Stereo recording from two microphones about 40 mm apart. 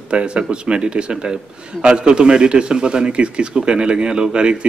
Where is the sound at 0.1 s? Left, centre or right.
Right.